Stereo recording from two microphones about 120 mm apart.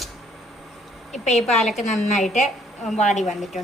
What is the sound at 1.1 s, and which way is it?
Speech, 70° left (ahead or behind).